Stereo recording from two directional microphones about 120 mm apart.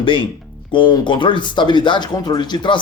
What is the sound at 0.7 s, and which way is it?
Speech, 40° left (ahead or behind).